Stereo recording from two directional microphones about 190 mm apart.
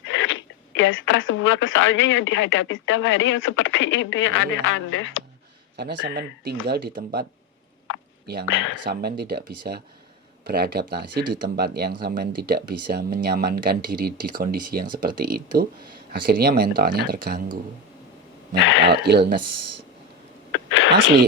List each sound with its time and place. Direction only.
0.0 s speech: 90° left
5.7 s speech: 60° right (ahead or behind)
8.4 s speech: 90° left
8.8 s speech: 55° right (ahead or behind)
18.9 s speech: 60° right (ahead or behind)
20.5 s a sound: 90° left